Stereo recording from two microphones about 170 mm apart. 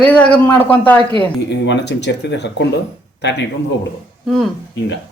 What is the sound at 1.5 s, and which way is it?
Speech, 90° left.